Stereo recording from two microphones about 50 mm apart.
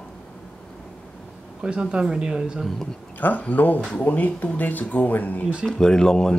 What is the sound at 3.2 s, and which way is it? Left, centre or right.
Speech, left.